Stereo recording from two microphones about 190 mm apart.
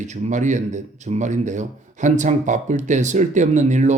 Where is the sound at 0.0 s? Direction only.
40° right (ahead or behind).